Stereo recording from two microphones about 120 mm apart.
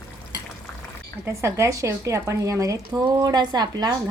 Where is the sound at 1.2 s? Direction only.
25° right (ahead or behind).